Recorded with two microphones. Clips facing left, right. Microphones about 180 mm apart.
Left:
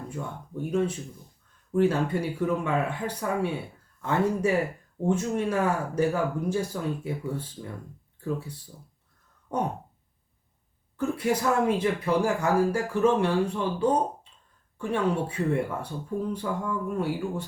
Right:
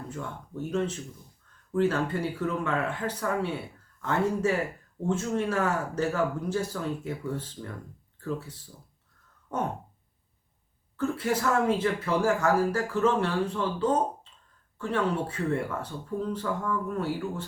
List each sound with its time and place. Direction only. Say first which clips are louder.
0.1 s speech: left 1 dB; 15° left (ahead or behind)
10.9 s speech: left 2 dB; 15° left (ahead or behind)